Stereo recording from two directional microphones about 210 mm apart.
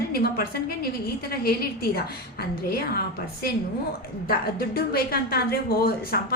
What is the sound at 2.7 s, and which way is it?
Speech, 50° left (ahead or behind).